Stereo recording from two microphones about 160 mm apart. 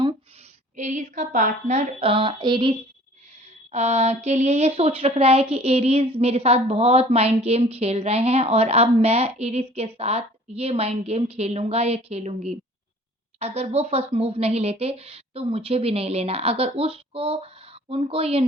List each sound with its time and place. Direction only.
0.8 s speech: 50° right (ahead or behind); by 2.7 s 30° right (ahead or behind)
3.7 s a woman's voice: 45° right (ahead or behind)